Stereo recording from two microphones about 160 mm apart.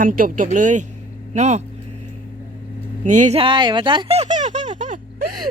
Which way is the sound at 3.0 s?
50° right (ahead or behind).